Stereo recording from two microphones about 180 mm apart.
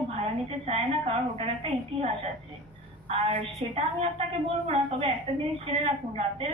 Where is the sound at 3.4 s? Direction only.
35° right (ahead or behind).